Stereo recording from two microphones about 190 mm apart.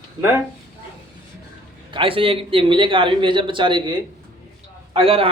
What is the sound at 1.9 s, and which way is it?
A man's voice, 30° right (ahead or behind).